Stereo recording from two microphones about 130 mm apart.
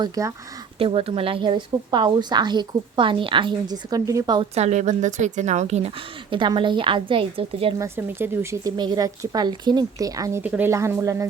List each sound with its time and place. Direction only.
0.0 s speech: 25° right (ahead or behind)
0.8 s a woman's voice: 45° right (ahead or behind); by 4.4 s 30° right (ahead or behind)
4.5 s a woman's voice: 60° right (ahead or behind)
6.3 s a woman's voice: 40° right (ahead or behind)
7.8 s speech: 20° right (ahead or behind)
8.7 s speech: 30° right (ahead or behind)
10.4 s speech: 10° right (ahead or behind)